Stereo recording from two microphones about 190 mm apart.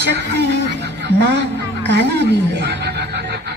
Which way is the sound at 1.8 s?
60° right (ahead or behind).